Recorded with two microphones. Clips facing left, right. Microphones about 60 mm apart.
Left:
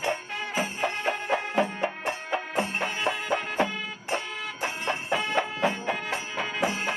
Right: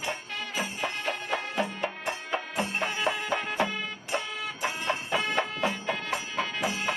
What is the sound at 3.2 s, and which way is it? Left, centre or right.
Music, centre.